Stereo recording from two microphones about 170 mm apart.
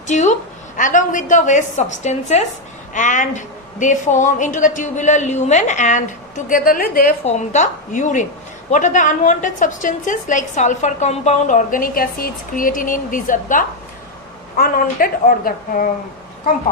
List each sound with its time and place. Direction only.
0.1 s a woman's voice: 45° left (ahead or behind)
7.3 s a woman's voice: 45° left (ahead or behind)